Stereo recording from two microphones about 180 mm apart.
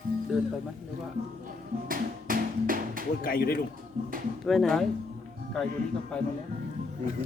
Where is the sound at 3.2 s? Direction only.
55° left (ahead or behind).